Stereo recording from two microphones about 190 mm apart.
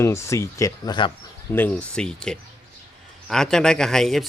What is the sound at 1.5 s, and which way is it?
Speech, 10° left (ahead or behind).